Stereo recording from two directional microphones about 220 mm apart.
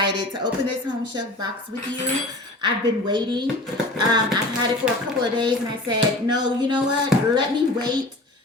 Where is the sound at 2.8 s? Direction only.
20° right (ahead or behind).